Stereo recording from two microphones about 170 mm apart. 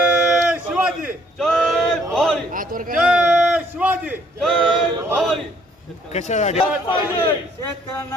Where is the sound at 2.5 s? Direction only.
55° right (ahead or behind).